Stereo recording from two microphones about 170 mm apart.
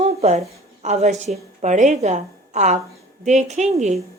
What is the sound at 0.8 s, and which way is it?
A woman's voice, 40° right (ahead or behind).